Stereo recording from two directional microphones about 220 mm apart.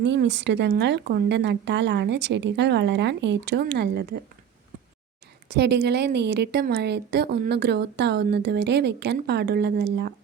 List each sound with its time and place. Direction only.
0.0 s a woman's voice: 55° right (ahead or behind)
5.5 s a woman's voice: 50° right (ahead or behind)